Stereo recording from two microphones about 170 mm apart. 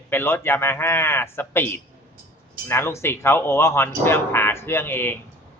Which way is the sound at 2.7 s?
15° left (ahead or behind).